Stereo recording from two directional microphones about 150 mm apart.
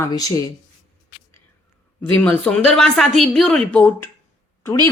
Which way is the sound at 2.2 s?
10° left (ahead or behind).